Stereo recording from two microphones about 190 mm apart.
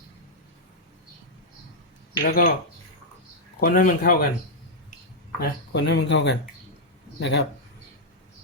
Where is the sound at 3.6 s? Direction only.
50° left (ahead or behind).